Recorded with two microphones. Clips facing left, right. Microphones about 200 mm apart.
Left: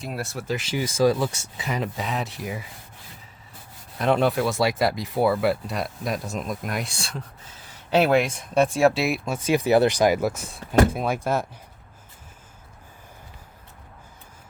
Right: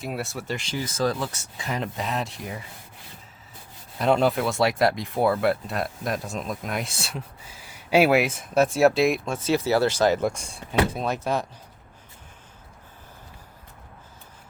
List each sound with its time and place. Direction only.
0.0 s speech: centre (ahead or behind)
3.9 s speech: centre (ahead or behind)